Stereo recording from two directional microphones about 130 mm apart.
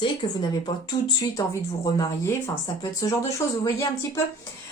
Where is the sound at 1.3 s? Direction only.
25° left (ahead or behind).